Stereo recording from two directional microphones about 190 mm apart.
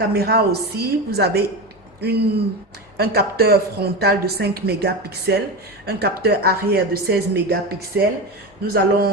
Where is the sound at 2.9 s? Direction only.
55° right (ahead or behind).